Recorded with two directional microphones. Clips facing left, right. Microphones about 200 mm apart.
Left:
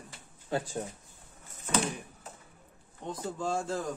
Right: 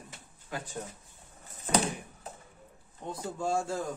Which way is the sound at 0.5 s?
30° left (ahead or behind).